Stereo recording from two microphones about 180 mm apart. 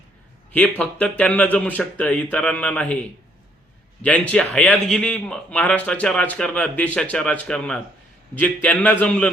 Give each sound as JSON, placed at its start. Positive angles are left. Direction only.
{"t": 0.5, "sound": "speech", "side_deg": 10}
{"t": 4.0, "sound": "a man's voice", "side_deg": 5}